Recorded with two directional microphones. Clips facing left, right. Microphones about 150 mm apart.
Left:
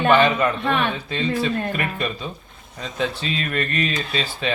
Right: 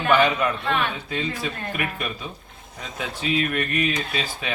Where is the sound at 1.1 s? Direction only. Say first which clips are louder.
Left 6 dB; 10° right (ahead or behind).